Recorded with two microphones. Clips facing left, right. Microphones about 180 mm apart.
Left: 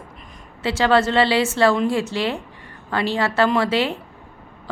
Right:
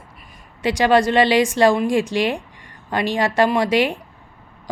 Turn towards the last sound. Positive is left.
turn(degrees=-15)  # may be behind; listen again after turning